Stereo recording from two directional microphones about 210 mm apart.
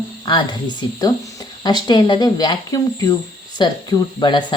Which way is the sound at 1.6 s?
20° left (ahead or behind).